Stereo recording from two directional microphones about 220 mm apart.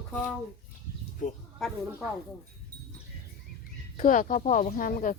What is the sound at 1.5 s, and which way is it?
Speech, centre (ahead or behind).